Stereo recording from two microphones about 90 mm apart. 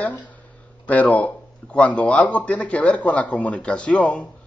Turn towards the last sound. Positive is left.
turn(degrees=15)  # may be behind; listen again after turning